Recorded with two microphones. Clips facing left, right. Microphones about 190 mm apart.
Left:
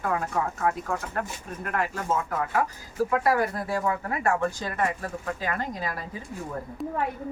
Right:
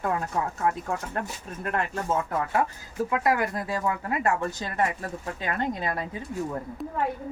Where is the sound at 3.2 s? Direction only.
20° right (ahead or behind).